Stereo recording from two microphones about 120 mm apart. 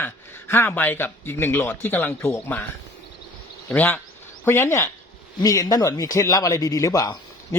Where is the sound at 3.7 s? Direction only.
15° left (ahead or behind).